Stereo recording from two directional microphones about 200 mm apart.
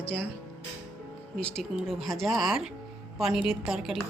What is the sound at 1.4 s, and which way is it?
A woman's voice, centre (ahead or behind).